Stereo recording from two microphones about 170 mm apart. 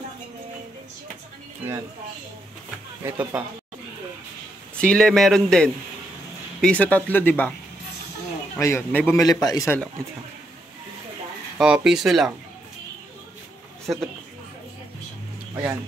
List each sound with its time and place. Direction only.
3.0 s speech: 15° right (ahead or behind)
4.7 s a man's voice: 5° left (ahead or behind)
8.5 s a man's voice: 15° left (ahead or behind)
11.5 s a man's voice: 5° right (ahead or behind)
15.5 s speech: 15° right (ahead or behind)